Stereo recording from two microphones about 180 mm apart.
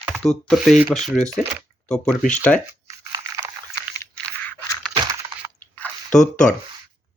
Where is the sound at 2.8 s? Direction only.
20° right (ahead or behind).